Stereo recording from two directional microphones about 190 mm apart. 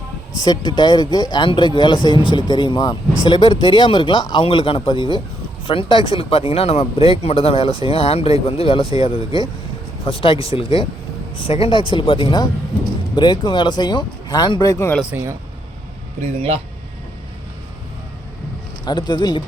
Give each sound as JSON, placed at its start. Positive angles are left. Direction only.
{"t": 0.4, "sound": "speech", "side_deg": 25}
{"t": 15.1, "sound": "speech", "side_deg": -15}
{"t": 18.9, "sound": "speech", "side_deg": 25}